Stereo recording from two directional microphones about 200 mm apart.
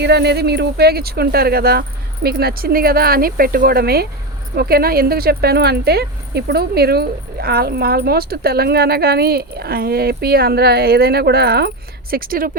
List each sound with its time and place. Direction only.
0.0 s speech: 55° right (ahead or behind)